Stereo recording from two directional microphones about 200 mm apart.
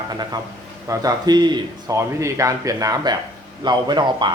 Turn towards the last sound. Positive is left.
turn(degrees=-20)  # may be behind; listen again after turning